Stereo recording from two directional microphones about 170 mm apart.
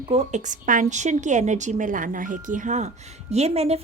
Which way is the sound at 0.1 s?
45° right (ahead or behind).